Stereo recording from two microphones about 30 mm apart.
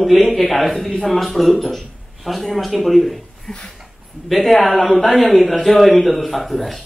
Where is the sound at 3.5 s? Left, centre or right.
Left.